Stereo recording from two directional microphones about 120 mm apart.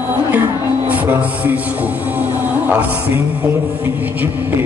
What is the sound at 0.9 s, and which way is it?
Music, 15° right (ahead or behind).